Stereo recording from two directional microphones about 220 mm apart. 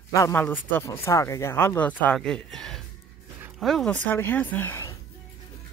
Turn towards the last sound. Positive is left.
turn(degrees=10)  # may be behind; listen again after turning